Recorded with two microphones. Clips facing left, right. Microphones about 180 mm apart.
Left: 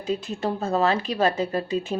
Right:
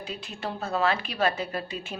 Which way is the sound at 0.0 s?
45° left (ahead or behind).